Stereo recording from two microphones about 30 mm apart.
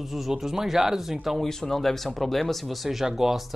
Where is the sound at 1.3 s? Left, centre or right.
Centre.